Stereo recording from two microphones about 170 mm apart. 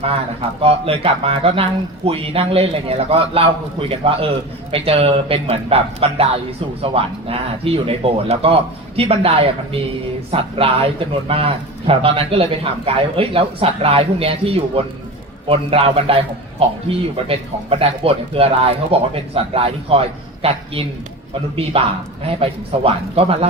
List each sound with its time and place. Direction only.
0.6 s a man's voice: 35° right (ahead or behind)